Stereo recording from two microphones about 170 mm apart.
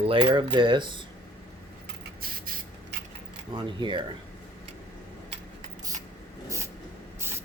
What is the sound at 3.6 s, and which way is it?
Speech, 30° right (ahead or behind).